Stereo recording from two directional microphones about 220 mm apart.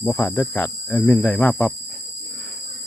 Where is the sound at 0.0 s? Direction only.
10° left (ahead or behind).